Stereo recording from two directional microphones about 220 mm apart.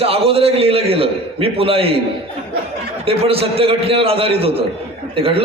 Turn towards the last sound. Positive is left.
turn(degrees=-25)  # may be behind; listen again after turning